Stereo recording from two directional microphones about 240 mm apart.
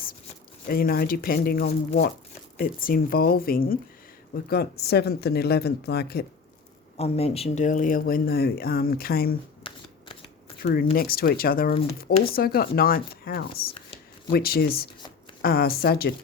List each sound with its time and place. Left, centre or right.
0.7 s speech: left
6.9 s speech: left
10.6 s speech: left